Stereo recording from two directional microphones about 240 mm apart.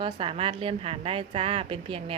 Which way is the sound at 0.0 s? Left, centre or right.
Right.